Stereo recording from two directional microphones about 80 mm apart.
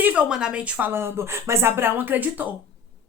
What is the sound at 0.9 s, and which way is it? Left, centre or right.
Speech, right.